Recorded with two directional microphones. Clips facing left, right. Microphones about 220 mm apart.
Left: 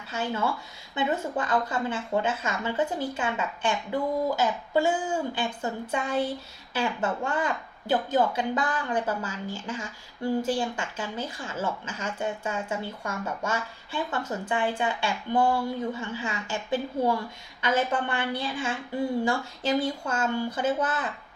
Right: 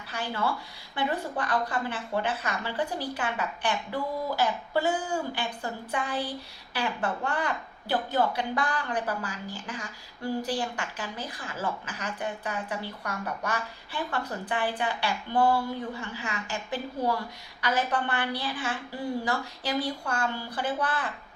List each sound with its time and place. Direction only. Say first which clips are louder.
0.1 s a woman's voice: left 2 dB; 25° left (ahead or behind)
7.3 s a woman's voice: left 2 dB; 20° left (ahead or behind)